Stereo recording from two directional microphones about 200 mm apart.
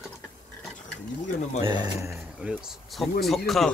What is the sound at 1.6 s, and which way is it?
Speech, 20° right (ahead or behind).